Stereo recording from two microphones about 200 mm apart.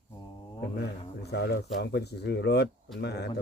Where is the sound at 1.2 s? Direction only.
55° left (ahead or behind).